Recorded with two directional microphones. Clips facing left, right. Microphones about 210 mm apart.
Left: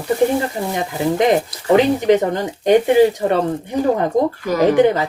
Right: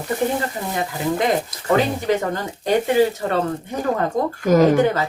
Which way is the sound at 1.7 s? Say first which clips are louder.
Left 6 dB; 20° left (ahead or behind).